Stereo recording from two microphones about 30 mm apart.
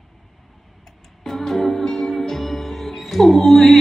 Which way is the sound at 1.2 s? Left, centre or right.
Centre.